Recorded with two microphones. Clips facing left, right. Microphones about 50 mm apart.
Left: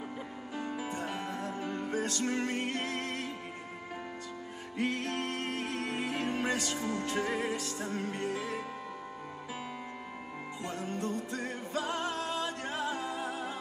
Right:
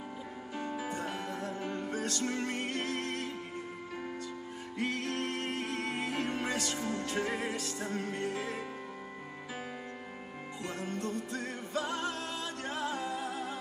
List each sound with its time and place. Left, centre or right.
0.7 s music: left
4.7 s music: left
8.4 s music: right
10.9 s music: left